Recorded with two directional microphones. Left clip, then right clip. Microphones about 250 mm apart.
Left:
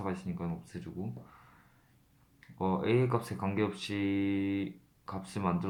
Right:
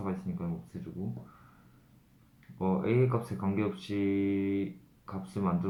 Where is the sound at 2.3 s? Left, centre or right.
Left.